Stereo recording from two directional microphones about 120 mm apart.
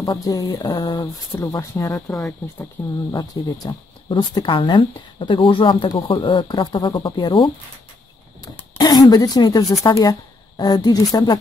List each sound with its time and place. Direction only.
0.0 s speech: 30° left (ahead or behind)
0.7 s speech: 40° left (ahead or behind)
5.9 s speech: 35° left (ahead or behind)
8.7 s speech: 35° left (ahead or behind)